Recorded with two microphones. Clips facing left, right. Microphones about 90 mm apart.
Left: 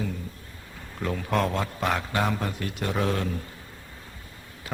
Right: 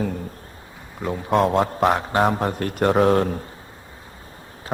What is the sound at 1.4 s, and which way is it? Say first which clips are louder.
A man's voice: right 10 dB; 40° right (ahead or behind).